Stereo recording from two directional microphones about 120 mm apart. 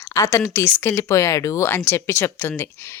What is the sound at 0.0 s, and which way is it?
Speech, 25° left (ahead or behind).